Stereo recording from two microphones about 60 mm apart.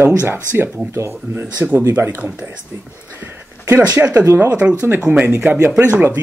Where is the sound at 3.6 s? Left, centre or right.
Right.